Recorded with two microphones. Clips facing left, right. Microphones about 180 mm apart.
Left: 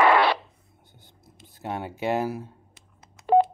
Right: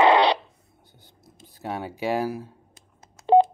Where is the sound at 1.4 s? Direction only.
20° left (ahead or behind).